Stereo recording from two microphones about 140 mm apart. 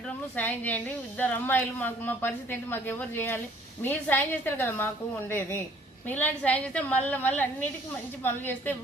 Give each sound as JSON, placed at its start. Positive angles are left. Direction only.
{"t": 0.3, "sound": "speech", "side_deg": 10}